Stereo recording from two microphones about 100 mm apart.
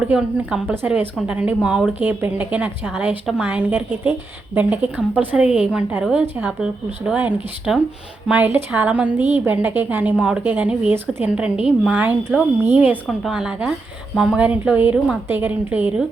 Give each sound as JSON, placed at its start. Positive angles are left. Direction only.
{"t": 0.0, "sound": "a woman's voice", "side_deg": -10}
{"t": 8.3, "sound": "a woman's voice", "side_deg": -20}